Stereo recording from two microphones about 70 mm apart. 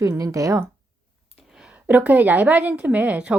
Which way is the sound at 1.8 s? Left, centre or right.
Right.